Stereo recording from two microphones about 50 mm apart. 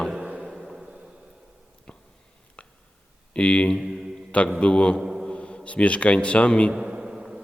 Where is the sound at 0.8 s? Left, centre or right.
Centre.